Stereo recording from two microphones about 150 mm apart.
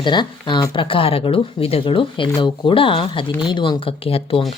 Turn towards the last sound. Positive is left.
turn(degrees=40)  # may be behind; listen again after turning